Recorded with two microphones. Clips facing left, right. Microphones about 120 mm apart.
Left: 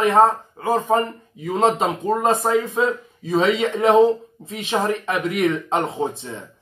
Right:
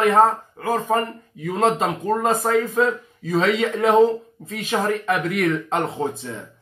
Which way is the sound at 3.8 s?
30° left (ahead or behind).